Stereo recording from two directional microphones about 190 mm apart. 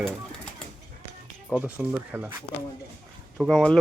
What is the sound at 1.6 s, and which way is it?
Speech, 10° right (ahead or behind).